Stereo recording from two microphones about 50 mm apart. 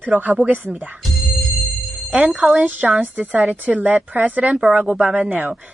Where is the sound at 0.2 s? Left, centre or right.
Right.